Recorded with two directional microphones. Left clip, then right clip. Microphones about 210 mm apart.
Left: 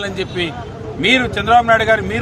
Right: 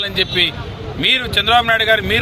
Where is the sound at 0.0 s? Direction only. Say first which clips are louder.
Right 5 dB; centre (ahead or behind).